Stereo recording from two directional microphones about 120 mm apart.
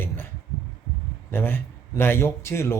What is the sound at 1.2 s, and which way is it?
Speech, 20° left (ahead or behind).